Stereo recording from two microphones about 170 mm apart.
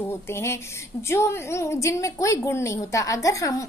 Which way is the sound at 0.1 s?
15° left (ahead or behind).